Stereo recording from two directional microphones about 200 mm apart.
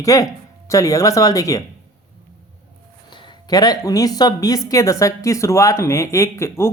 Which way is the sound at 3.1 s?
20° left (ahead or behind).